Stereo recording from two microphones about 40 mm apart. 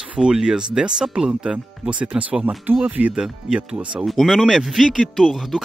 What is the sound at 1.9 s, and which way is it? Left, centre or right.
Speech, right.